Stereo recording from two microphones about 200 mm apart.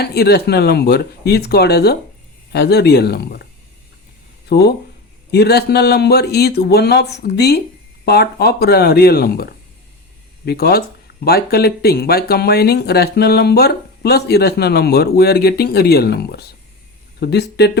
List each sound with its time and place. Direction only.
0.0 s speech: 55° left (ahead or behind)
4.4 s speech: 55° left (ahead or behind)